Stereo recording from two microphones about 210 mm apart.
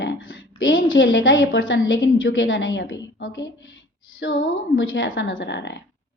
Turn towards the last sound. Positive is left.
turn(degrees=55)  # may be behind; listen again after turning